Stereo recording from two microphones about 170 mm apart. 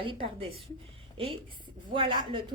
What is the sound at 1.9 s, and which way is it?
Speech, 30° right (ahead or behind).